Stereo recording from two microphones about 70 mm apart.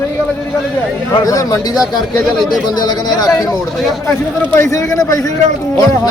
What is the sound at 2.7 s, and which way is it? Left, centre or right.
Speech, left.